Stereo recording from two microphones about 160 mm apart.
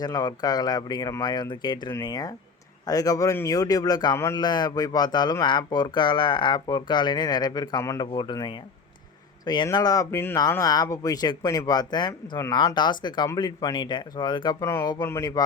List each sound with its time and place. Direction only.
0.0 s a man's voice: 25° left (ahead or behind)